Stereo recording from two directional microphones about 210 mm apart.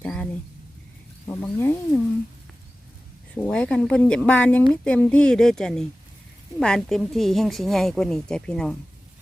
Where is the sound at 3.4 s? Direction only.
5° left (ahead or behind).